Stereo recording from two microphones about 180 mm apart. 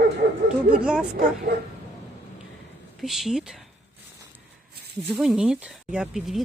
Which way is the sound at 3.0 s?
Centre (ahead or behind).